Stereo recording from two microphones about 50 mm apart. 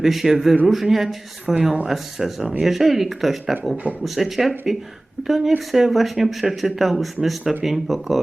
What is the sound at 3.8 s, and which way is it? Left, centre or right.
Speech, right.